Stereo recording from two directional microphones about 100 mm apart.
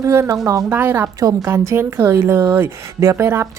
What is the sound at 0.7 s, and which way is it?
Speech, 20° right (ahead or behind).